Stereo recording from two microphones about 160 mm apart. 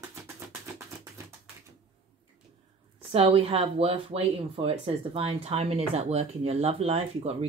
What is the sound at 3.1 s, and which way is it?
Speech, 35° right (ahead or behind).